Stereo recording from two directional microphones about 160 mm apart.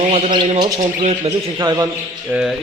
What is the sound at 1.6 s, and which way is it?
Speech, 25° right (ahead or behind).